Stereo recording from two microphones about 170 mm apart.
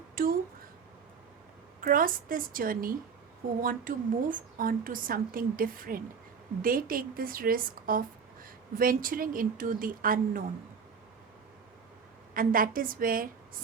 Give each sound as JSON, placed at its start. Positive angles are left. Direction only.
{"t": 0.2, "sound": "speech", "side_deg": -60}
{"t": 1.8, "sound": "speech", "side_deg": -55}
{"t": 12.3, "sound": "speech", "side_deg": -55}